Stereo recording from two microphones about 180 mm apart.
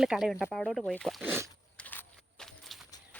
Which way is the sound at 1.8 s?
10° left (ahead or behind).